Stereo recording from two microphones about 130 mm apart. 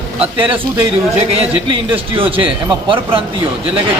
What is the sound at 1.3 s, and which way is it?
Speech, 50° right (ahead or behind).